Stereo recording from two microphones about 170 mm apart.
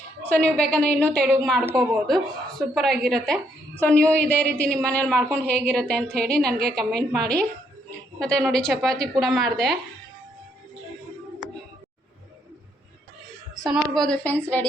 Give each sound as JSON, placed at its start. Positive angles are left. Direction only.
{"t": 0.2, "sound": "a woman's voice", "side_deg": 10}
{"t": 1.6, "sound": "a woman's voice", "side_deg": -20}
{"t": 2.0, "sound": "a woman's voice", "side_deg": 0}
{"t": 13.7, "sound": "a woman's voice", "side_deg": 0}